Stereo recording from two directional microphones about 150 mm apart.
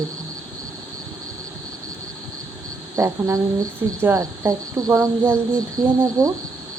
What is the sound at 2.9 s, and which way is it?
Speech, 20° right (ahead or behind).